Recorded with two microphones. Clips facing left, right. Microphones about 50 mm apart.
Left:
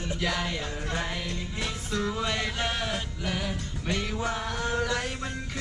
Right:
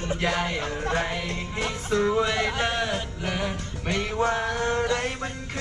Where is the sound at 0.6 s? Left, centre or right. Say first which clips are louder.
Right 6 dB; right.